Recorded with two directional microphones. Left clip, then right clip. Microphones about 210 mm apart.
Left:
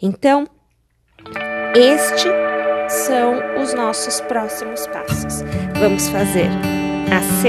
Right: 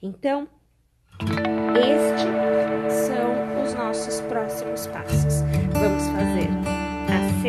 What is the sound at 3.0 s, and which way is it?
A woman's voice, 40° left (ahead or behind).